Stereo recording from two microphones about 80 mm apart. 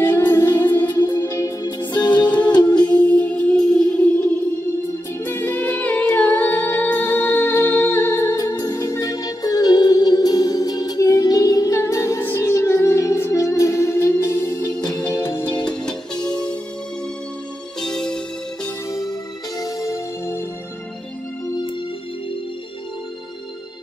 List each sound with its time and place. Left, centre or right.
0.0 s music: left
0.8 s music: left
1.6 s music: left
2.2 s music: centre
5.2 s music: left
8.5 s music: left
15.6 s music: centre
17.7 s music: centre
18.9 s music: left